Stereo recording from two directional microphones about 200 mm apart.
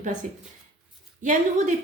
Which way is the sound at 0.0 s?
40° right (ahead or behind).